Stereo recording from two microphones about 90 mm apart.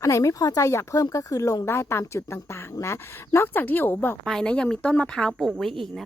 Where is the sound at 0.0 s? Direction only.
35° left (ahead or behind).